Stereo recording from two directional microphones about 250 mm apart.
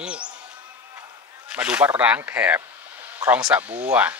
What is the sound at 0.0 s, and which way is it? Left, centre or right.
Basketball bounce, centre.